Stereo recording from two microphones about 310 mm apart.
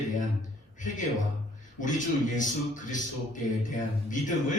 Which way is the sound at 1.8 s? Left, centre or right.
Left.